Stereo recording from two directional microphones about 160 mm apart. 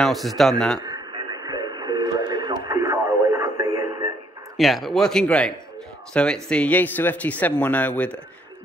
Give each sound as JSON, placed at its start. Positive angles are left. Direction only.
{"t": 0.0, "sound": "speech", "side_deg": 0}
{"t": 0.7, "sound": "radio", "side_deg": -25}
{"t": 4.6, "sound": "speech", "side_deg": 0}